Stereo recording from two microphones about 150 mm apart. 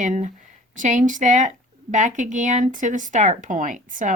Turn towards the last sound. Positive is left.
turn(degrees=-60)  # may be behind; listen again after turning